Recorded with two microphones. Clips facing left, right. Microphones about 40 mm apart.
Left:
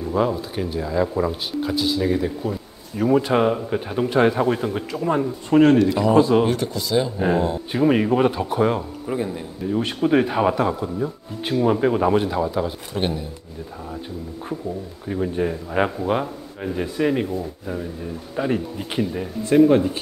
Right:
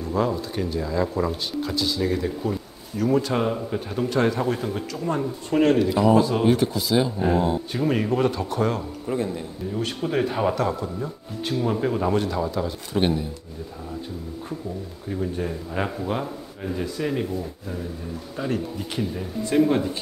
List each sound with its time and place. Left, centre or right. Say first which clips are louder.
0.0 s a man's voice: left 3 dB; centre
5.8 s speech: left 1 dB; centre
6.1 s speech: left 4 dB; centre
6.4 s speech: right 2 dB; centre
7.7 s a man's voice: left 9 dB; centre
12.9 s speech: right 3 dB; centre
15.0 s a man's voice: left 5 dB; left
18.3 s a man's voice: left 4 dB; left